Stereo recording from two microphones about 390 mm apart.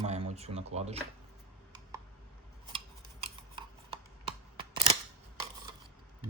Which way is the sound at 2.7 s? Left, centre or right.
Centre.